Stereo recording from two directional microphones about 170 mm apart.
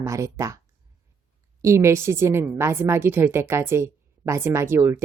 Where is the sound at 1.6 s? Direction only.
15° right (ahead or behind).